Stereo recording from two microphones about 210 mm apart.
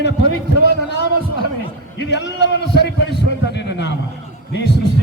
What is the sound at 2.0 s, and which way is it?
A man's voice, 55° left (ahead or behind).